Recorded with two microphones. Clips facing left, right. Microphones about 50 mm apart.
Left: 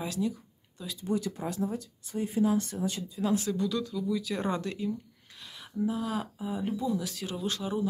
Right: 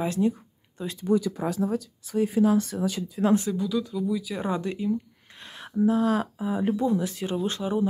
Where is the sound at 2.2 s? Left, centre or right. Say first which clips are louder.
Right 5 dB; right.